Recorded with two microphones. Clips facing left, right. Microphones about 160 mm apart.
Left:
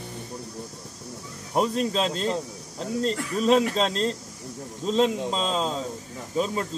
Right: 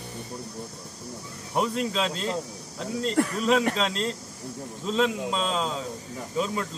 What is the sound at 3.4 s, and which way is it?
A man's voice, 35° left (ahead or behind).